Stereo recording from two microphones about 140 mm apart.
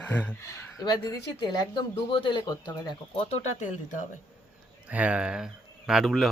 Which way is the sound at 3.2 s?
50° left (ahead or behind).